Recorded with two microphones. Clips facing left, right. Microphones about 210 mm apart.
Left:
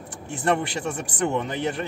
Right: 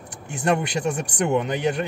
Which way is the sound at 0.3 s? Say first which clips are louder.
Right 1 dB; 15° right (ahead or behind).